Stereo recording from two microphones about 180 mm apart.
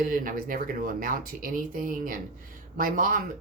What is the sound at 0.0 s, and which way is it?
Speech, 50° right (ahead or behind).